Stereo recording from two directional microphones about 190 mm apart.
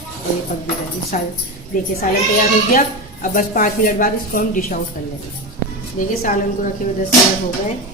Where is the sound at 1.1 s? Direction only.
40° left (ahead or behind).